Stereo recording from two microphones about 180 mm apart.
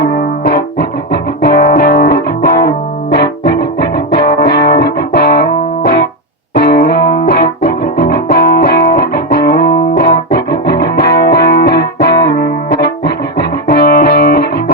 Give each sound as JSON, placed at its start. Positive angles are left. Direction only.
{"t": 0.0, "sound": "music", "side_deg": 60}